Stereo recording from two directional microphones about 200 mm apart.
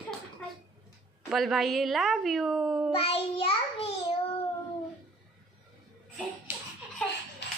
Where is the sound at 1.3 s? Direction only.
Centre (ahead or behind).